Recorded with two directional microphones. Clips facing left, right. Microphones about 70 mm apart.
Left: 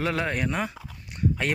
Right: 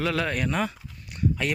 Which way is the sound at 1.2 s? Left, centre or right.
Left.